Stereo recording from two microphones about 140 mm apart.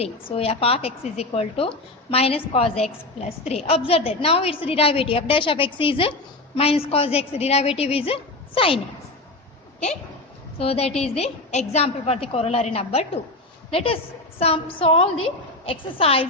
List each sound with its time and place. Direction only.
0.0 s a woman's voice: 45° left (ahead or behind)
10.6 s a woman's voice: 45° left (ahead or behind)